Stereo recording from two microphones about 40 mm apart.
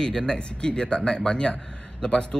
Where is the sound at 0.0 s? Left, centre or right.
Centre.